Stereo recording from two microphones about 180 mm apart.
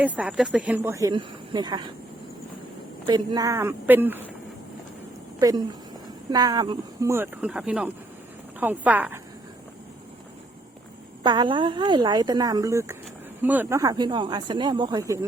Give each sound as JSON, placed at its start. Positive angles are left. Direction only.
{"t": 0.0, "sound": "speech", "side_deg": -5}
{"t": 3.1, "sound": "speech", "side_deg": -20}
{"t": 5.4, "sound": "speech", "side_deg": -20}
{"t": 11.2, "sound": "speech", "side_deg": -25}